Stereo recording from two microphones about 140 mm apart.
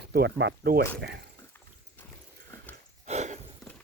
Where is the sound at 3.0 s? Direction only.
55° right (ahead or behind).